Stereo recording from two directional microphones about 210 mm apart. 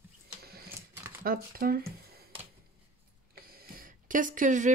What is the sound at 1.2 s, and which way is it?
Speech, 45° right (ahead or behind).